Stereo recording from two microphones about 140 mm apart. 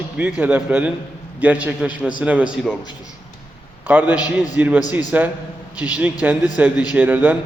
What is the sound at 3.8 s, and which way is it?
A man's voice, 15° right (ahead or behind).